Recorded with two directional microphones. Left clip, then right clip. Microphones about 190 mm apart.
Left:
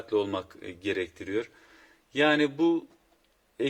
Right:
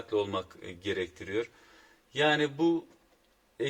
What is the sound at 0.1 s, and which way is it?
Speech, 35° left (ahead or behind).